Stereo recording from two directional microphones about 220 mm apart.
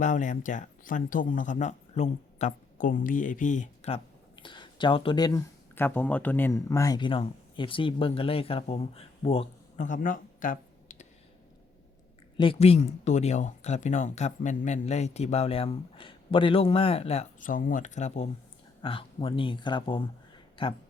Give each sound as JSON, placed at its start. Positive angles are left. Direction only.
{"t": 0.0, "sound": "speech", "side_deg": 35}
{"t": 12.4, "sound": "speech", "side_deg": 25}